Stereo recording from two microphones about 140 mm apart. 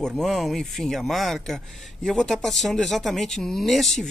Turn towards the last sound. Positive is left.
turn(degrees=0)  # may be behind; listen again after turning